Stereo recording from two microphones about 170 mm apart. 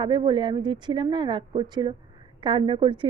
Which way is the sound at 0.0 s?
25° right (ahead or behind).